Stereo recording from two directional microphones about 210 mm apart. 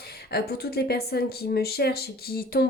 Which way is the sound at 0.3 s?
50° left (ahead or behind).